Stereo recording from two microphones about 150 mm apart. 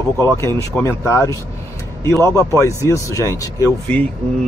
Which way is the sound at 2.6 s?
20° left (ahead or behind).